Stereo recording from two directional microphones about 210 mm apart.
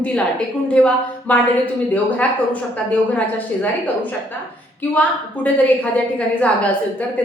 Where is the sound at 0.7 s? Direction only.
5° left (ahead or behind).